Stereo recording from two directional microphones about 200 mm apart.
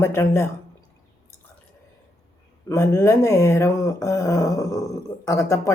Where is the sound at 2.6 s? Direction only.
15° left (ahead or behind).